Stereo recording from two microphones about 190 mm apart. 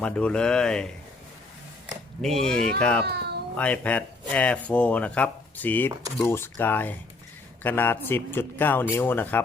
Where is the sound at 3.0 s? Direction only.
60° right (ahead or behind).